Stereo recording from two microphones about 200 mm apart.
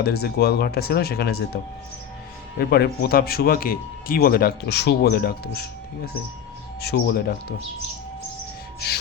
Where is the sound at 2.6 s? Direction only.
50° left (ahead or behind).